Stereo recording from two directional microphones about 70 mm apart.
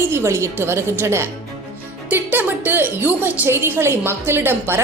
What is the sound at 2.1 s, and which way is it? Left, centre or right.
A woman's voice, right.